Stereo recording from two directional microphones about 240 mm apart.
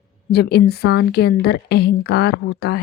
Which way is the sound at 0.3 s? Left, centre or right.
Left.